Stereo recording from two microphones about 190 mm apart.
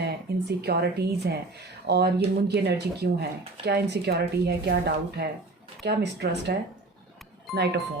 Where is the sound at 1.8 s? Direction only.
60° right (ahead or behind).